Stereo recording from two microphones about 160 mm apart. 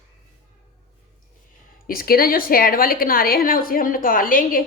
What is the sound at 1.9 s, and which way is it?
A woman's voice, 65° left (ahead or behind).